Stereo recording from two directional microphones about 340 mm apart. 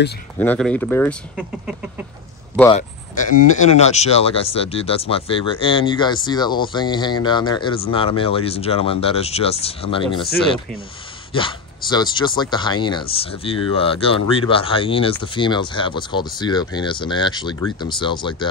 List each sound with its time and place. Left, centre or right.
0.4 s speech: centre
2.7 s speech: left
11.3 s speech: centre